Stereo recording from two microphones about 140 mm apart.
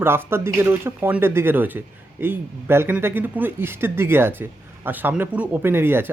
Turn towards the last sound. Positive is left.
turn(degrees=-15)  # may be behind; listen again after turning